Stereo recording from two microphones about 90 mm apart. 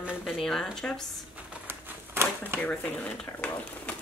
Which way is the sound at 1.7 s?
25° right (ahead or behind).